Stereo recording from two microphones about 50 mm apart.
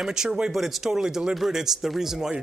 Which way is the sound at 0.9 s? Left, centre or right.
Centre.